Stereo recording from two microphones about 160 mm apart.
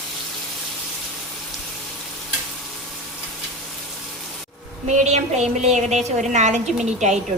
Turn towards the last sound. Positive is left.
turn(degrees=-45)  # may be behind; listen again after turning